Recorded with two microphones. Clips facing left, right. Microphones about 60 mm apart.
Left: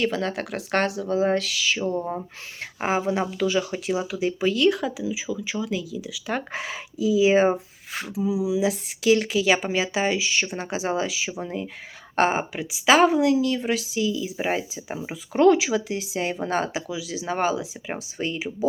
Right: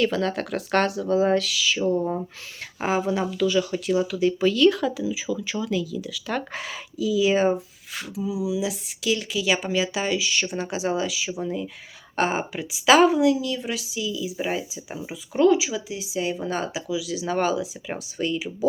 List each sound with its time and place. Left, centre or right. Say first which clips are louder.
0.0 s speech: right 2 dB; left
4.4 s speech: right 1 dB; centre; by 12.4 s left
12.4 s speech: left 1 dB; left
13.1 s speech: even; left